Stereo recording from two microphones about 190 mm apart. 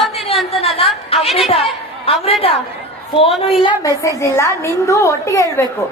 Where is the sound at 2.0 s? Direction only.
30° left (ahead or behind).